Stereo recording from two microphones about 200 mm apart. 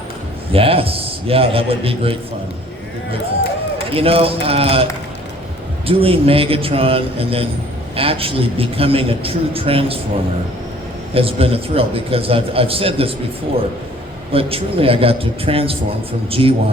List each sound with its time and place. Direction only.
0.5 s a man's voice: 30° right (ahead or behind)
3.9 s a man's voice: 30° right (ahead or behind)
5.9 s a man's voice: 30° right (ahead or behind)
11.1 s a man's voice: 30° right (ahead or behind)
14.3 s a man's voice: 30° right (ahead or behind)